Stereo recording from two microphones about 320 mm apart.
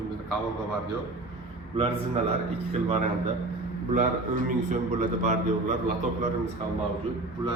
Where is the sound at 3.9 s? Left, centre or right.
Right.